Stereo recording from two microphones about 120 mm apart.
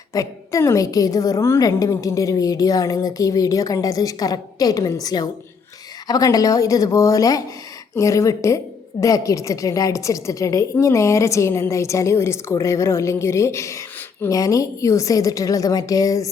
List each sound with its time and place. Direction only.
0.1 s a woman's voice: 25° left (ahead or behind)